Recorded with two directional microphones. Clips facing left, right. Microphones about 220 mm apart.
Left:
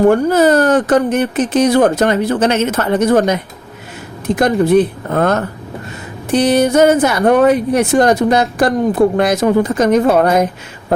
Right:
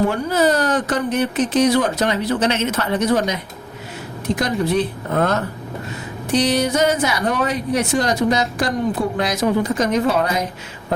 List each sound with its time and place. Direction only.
0.1 s a woman's voice: 50° left (ahead or behind)
4.4 s a woman's voice: 55° left (ahead or behind)